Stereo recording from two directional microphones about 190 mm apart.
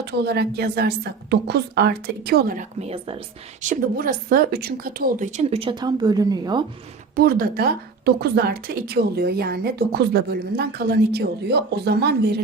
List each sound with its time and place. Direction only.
0.0 s a woman's voice: 60° right (ahead or behind)
2.8 s speech: 30° right (ahead or behind)
3.7 s a woman's voice: 50° right (ahead or behind); by 6.7 s 20° right (ahead or behind)
7.2 s a woman's voice: 50° right (ahead or behind)